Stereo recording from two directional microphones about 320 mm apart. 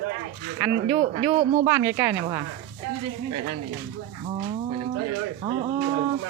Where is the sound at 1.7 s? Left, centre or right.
Centre.